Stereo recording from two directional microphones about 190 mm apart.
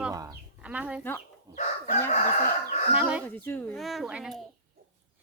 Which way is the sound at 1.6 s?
40° left (ahead or behind).